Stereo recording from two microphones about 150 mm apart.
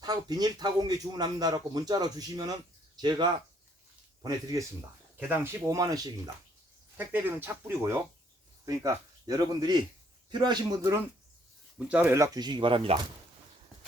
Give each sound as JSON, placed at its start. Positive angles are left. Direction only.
{"t": 0.0, "sound": "speech", "side_deg": -25}
{"t": 6.9, "sound": "speech", "side_deg": -15}
{"t": 11.9, "sound": "speech", "side_deg": -10}